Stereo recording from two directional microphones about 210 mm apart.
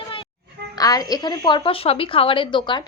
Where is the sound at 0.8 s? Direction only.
15° left (ahead or behind).